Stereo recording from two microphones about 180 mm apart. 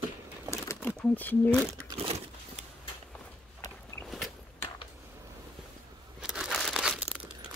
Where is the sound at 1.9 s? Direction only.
35° right (ahead or behind).